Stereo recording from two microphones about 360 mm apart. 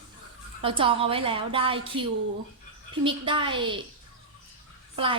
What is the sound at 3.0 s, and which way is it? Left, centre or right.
Speech, centre.